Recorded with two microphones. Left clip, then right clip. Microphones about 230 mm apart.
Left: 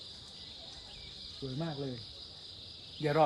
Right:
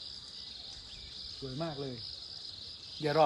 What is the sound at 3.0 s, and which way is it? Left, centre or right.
Cricket, right.